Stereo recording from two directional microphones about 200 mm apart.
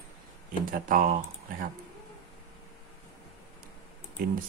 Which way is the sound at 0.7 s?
45° right (ahead or behind).